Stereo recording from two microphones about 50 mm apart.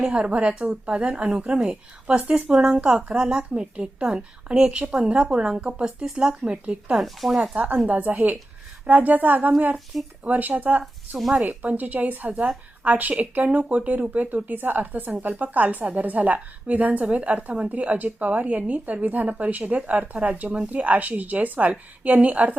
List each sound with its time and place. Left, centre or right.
0.0 s a woman's voice: centre
6.9 s speech: centre
7.5 s a woman's voice: right
9.7 s speech: centre
10.2 s a woman's voice: right